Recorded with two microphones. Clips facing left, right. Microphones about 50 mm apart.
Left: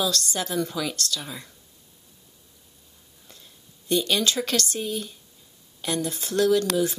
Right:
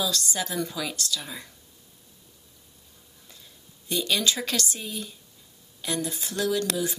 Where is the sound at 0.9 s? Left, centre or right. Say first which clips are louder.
Left 1 dB; left.